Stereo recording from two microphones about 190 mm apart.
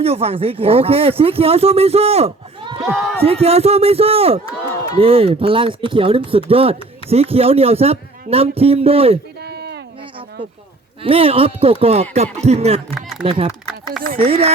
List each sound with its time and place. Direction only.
0.0 s speech: 35° right (ahead or behind)
2.8 s speech: centre (ahead or behind)
3.2 s speech: 30° right (ahead or behind)
9.4 s a sound: 60° right (ahead or behind)
11.0 s speech: 30° right (ahead or behind)
12.9 s a sound: centre (ahead or behind)
14.2 s speech: 30° right (ahead or behind)